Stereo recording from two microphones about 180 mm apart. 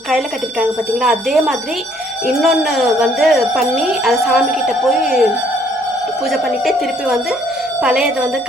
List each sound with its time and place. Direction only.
0.6 s speech: centre (ahead or behind)
6.3 s speech: centre (ahead or behind)